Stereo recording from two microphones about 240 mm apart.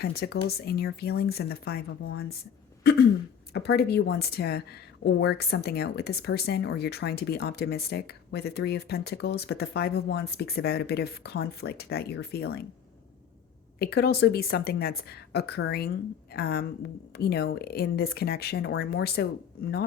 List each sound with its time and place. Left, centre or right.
0.0 s a woman's voice: left
3.5 s a woman's voice: left
13.7 s a woman's voice: left